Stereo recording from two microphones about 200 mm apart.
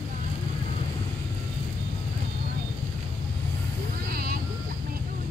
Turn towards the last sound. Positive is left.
turn(degrees=-45)  # may be behind; listen again after turning